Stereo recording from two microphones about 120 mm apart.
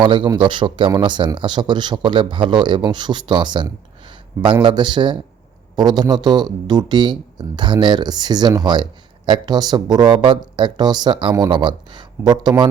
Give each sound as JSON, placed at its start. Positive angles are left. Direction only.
{"t": 0.0, "sound": "speech", "side_deg": -40}